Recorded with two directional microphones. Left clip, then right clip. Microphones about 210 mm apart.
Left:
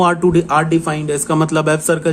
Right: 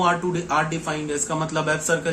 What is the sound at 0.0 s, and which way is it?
Speech, 55° left (ahead or behind).